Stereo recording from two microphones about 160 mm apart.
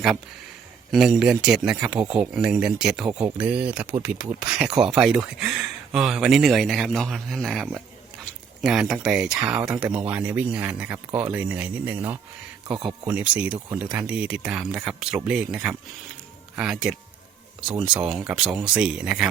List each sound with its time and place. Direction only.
0.9 s speech: centre (ahead or behind)